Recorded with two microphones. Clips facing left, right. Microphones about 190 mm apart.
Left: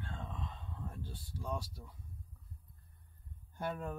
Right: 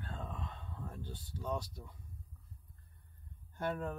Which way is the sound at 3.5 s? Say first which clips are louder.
Right 2 dB; 10° left (ahead or behind).